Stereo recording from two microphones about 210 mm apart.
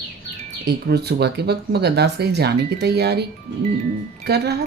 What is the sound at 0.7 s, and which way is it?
Speech, 50° right (ahead or behind).